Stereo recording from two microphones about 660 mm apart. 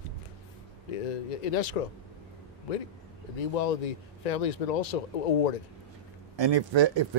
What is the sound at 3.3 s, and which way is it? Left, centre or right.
Speech, left.